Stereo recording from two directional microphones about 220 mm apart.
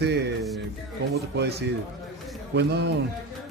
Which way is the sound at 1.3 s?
50° right (ahead or behind).